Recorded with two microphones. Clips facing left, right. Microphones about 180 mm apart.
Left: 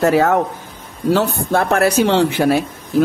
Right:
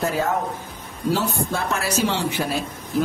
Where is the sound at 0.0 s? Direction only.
75° left (ahead or behind).